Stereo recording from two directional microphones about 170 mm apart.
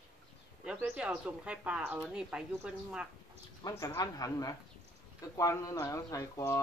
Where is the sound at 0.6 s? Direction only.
5° right (ahead or behind).